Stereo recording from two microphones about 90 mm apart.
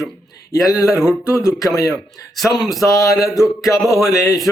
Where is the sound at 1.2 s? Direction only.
30° left (ahead or behind).